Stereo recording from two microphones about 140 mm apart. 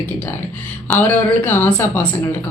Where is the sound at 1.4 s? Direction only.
15° left (ahead or behind).